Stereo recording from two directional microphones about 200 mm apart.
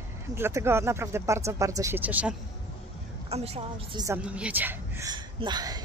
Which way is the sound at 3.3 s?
30° right (ahead or behind).